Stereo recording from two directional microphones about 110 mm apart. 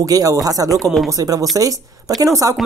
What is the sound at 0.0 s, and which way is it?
Speech, 35° right (ahead or behind).